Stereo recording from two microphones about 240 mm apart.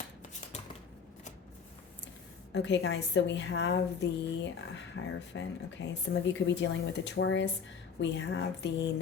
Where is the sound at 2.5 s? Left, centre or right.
Left.